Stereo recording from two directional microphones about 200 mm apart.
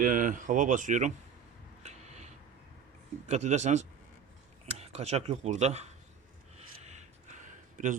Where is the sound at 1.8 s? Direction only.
35° right (ahead or behind).